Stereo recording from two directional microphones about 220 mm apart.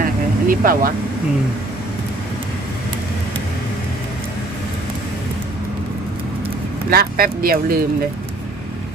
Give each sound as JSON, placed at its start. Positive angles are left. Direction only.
{"t": 0.0, "sound": "vehicle", "side_deg": -40}
{"t": 6.9, "sound": "speech", "side_deg": -40}